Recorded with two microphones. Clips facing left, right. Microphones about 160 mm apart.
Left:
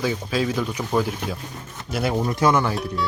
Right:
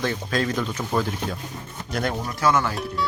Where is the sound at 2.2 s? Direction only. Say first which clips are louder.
Left 3 dB; 20° left (ahead or behind).